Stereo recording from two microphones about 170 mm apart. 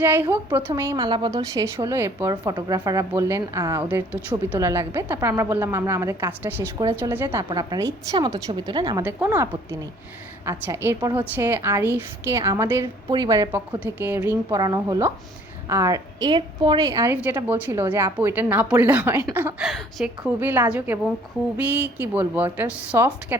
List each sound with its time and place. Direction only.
0.0 s a woman's voice: 15° right (ahead or behind)
9.0 s a woman's voice: 15° right (ahead or behind)
19.6 s a woman's voice: centre (ahead or behind)
20.4 s a woman's voice: 10° right (ahead or behind)